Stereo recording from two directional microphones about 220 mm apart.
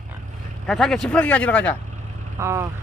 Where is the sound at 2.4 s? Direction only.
10° right (ahead or behind).